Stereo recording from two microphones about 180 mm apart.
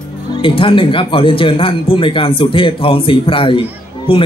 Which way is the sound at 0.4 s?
30° left (ahead or behind).